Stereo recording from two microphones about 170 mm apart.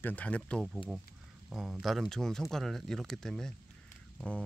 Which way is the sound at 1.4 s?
5° right (ahead or behind).